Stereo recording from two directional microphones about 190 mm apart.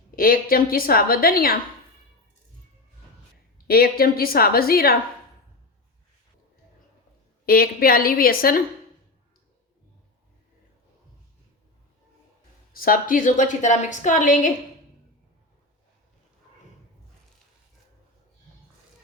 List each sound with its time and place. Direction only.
0.2 s a woman's voice: 50° left (ahead or behind)
3.7 s a woman's voice: 55° left (ahead or behind)
7.4 s a woman's voice: 50° left (ahead or behind)
12.7 s a woman's voice: 50° left (ahead or behind)